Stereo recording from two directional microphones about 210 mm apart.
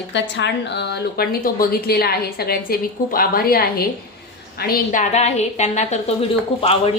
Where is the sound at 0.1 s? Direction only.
55° left (ahead or behind).